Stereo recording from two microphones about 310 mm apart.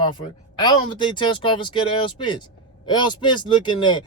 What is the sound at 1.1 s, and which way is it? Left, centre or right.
Speech, centre.